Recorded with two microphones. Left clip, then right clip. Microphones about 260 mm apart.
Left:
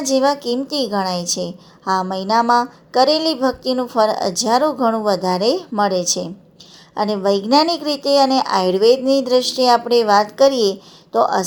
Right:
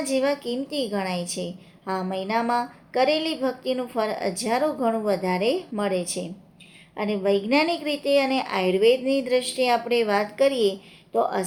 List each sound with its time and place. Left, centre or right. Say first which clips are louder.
0.0 s a woman's voice: left 7 dB; left
4.9 s a woman's voice: left 6 dB; centre
5.2 s a woman's voice: left 6 dB; left